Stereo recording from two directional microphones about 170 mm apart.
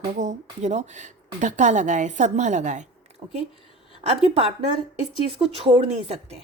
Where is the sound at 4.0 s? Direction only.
35° right (ahead or behind).